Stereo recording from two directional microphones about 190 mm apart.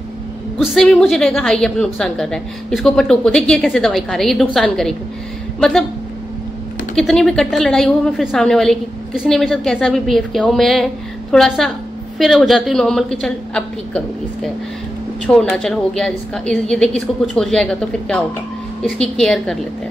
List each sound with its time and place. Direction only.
0.6 s a woman's voice: centre (ahead or behind)
7.0 s a woman's voice: centre (ahead or behind)